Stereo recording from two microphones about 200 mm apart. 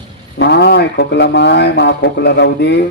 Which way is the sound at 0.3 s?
55° left (ahead or behind).